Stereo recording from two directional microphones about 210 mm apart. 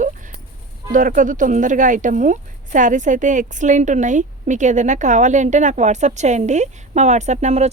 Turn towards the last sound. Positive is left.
turn(degrees=-30)  # may be behind; listen again after turning